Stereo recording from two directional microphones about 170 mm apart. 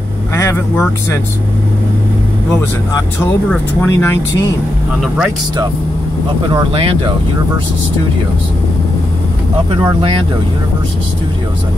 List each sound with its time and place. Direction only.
0.3 s speech: 15° left (ahead or behind)
3.3 s speech: 10° left (ahead or behind)
5.0 s speech: 5° right (ahead or behind)
6.5 s speech: 35° right (ahead or behind)